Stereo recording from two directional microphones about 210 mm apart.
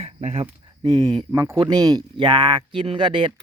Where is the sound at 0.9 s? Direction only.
20° right (ahead or behind).